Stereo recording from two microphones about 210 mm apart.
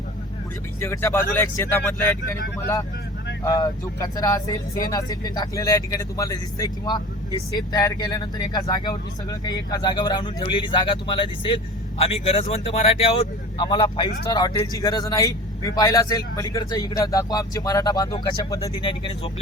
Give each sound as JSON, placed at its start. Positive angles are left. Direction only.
{"t": 0.8, "sound": "speech", "side_deg": 10}
{"t": 3.4, "sound": "speech", "side_deg": 20}